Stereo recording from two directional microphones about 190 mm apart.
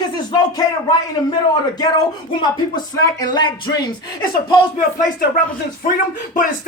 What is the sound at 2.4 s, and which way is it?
Speech, 20° left (ahead or behind).